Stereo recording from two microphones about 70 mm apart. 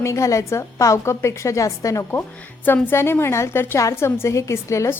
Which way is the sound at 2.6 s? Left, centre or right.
Left.